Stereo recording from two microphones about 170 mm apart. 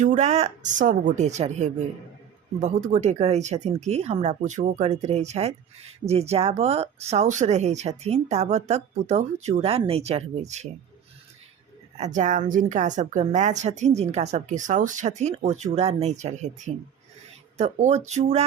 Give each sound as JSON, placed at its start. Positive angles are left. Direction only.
{"t": 0.0, "sound": "a woman's voice", "side_deg": -45}
{"t": 11.9, "sound": "a woman's voice", "side_deg": -45}